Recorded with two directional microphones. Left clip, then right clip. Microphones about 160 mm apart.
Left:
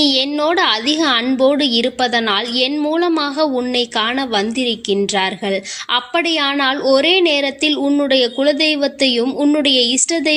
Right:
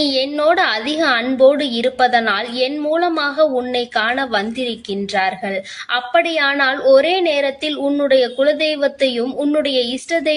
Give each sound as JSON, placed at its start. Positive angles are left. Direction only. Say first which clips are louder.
{"t": 0.0, "sound": "a woman's voice", "louder": "left 1 dB", "side_deg": 35}